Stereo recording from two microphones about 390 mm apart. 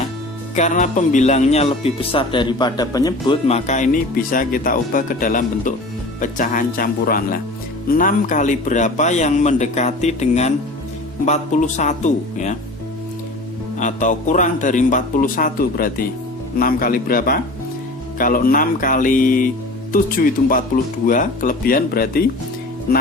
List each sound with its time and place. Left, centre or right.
0.5 s speech: centre
13.7 s speech: centre